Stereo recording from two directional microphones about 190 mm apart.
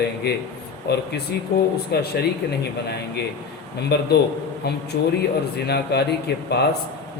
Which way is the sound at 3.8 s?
60° left (ahead or behind).